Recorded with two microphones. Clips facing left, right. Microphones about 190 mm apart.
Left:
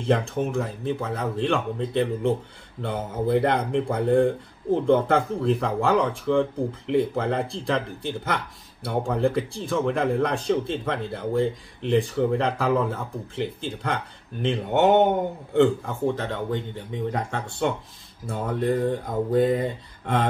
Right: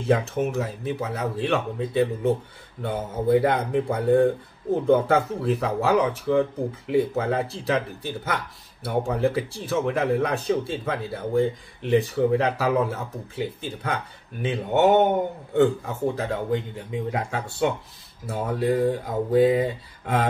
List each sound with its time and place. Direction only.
0.0 s speech: 5° right (ahead or behind)